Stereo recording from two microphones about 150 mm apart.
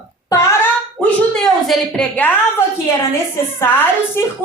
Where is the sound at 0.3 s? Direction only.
15° left (ahead or behind).